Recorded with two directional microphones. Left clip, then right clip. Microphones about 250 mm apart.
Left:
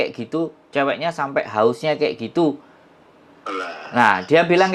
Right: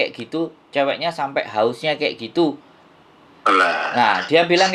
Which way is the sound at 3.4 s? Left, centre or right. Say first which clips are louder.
Right 12 dB; right.